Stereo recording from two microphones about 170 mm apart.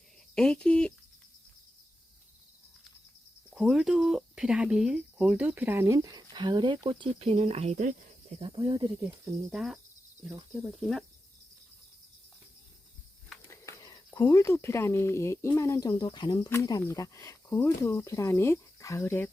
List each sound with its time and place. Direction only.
0.3 s speech: 5° left (ahead or behind)
3.5 s speech: centre (ahead or behind); by 7.9 s 45° right (ahead or behind)
8.4 s speech: 30° right (ahead or behind)
9.5 s speech: centre (ahead or behind)
13.5 s speech: 20° left (ahead or behind)